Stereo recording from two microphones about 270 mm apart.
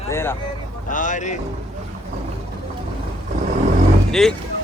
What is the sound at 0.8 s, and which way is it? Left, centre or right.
Speech, left.